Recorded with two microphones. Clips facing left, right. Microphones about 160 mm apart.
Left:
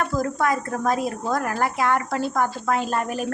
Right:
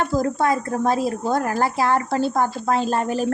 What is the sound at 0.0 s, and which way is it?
A woman's voice, 30° right (ahead or behind).